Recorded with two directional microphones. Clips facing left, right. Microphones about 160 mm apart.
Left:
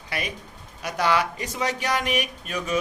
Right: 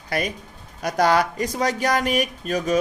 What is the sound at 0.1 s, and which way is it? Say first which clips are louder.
Speech: right 6 dB; 40° right (ahead or behind).